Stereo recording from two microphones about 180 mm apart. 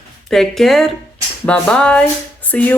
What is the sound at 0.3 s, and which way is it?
Speech, centre (ahead or behind).